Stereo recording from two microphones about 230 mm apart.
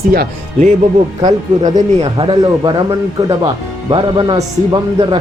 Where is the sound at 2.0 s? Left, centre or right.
Right.